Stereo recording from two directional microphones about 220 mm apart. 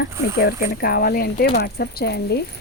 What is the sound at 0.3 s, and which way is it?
Speech, 45° left (ahead or behind).